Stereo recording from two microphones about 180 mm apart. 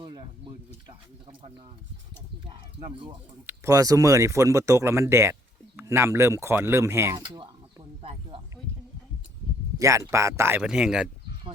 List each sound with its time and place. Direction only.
0.0 s speech: 25° right (ahead or behind)
2.5 s speech: 30° right (ahead or behind)
3.4 s speech: 15° right (ahead or behind)
8.3 s a sound: 30° right (ahead or behind)
9.7 s speech: 15° right (ahead or behind)